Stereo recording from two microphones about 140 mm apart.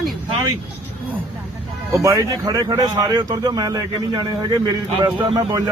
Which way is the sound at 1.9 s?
20° right (ahead or behind).